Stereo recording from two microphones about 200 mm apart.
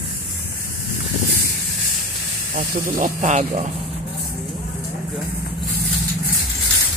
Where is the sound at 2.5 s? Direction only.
40° right (ahead or behind).